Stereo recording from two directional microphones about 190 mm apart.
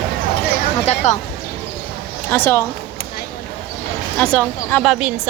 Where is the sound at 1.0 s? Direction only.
35° left (ahead or behind).